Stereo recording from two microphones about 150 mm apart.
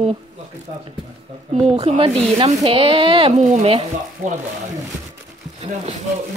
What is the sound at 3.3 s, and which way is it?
Speech, 55° right (ahead or behind).